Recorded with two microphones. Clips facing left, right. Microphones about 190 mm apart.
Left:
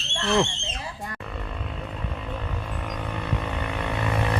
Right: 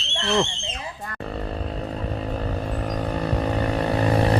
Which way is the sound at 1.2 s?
35° right (ahead or behind).